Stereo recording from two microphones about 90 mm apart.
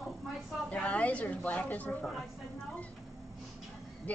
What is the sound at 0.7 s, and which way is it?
A woman's voice, 10° left (ahead or behind).